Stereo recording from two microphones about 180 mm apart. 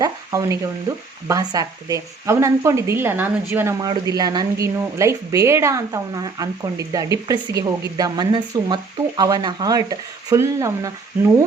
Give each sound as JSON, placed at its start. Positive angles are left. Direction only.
{"t": 0.0, "sound": "a woman's voice", "side_deg": -20}